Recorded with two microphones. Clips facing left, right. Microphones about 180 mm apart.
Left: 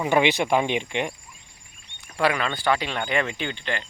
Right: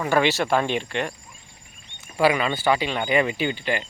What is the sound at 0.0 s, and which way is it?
Speech, 20° left (ahead or behind).